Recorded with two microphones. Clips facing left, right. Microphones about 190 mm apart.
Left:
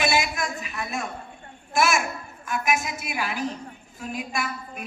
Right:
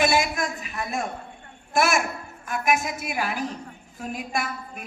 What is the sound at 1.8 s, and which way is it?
A child's voice, 55° right (ahead or behind).